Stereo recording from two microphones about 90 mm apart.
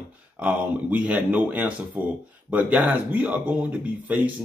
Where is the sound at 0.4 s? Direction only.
15° right (ahead or behind).